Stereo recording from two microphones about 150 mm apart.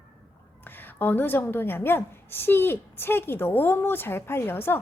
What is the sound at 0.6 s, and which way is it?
A woman's voice, 10° left (ahead or behind).